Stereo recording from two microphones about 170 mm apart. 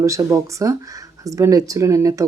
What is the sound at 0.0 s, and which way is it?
Speech, 20° right (ahead or behind).